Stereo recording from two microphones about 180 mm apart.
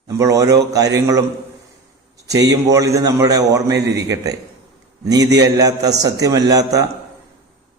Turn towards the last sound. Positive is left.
turn(degrees=-20)  # may be behind; listen again after turning